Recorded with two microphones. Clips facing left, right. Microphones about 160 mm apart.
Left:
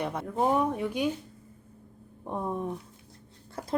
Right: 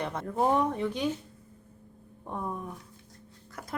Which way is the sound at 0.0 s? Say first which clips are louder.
Even; 10° left (ahead or behind).